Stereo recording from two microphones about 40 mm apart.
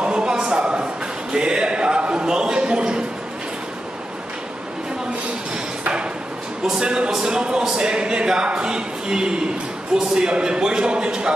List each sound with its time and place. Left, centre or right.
0.0 s a sound: right
6.6 s a man's voice: centre
7.1 s speech: centre
7.3 s a man's voice: centre